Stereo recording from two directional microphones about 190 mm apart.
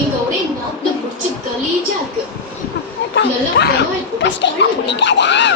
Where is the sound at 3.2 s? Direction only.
65° left (ahead or behind).